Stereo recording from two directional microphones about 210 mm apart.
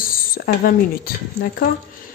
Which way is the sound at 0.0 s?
40° left (ahead or behind).